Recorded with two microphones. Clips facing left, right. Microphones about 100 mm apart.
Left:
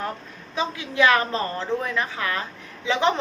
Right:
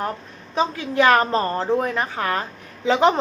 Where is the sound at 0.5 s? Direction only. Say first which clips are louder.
Right 5 dB; 40° right (ahead or behind).